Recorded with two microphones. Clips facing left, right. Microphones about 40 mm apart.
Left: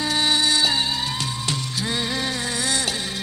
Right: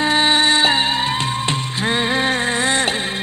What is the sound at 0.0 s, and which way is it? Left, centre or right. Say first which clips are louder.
Music: right 6 dB; right.